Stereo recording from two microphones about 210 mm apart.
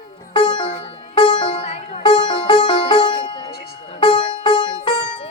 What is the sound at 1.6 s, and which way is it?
Music, 30° left (ahead or behind).